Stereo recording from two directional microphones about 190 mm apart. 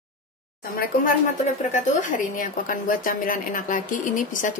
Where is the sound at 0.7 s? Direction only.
50° left (ahead or behind).